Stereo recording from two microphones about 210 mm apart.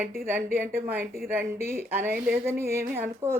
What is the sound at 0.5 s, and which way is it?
Speech, 10° right (ahead or behind).